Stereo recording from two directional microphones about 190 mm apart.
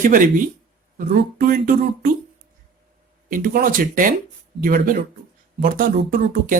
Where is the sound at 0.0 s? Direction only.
45° right (ahead or behind).